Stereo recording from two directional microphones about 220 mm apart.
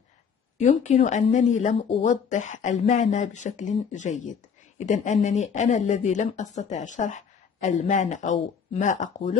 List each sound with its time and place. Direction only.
0.6 s speech: 30° left (ahead or behind)